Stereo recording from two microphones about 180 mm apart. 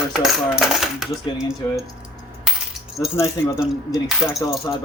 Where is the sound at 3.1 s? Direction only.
15° left (ahead or behind).